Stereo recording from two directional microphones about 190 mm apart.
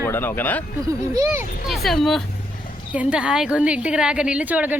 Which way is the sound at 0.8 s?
20° right (ahead or behind).